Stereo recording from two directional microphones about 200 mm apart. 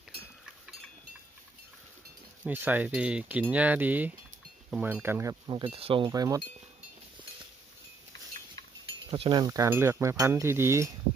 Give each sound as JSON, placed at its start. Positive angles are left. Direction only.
{"t": 2.4, "sound": "speech", "side_deg": -10}
{"t": 9.0, "sound": "speech", "side_deg": -25}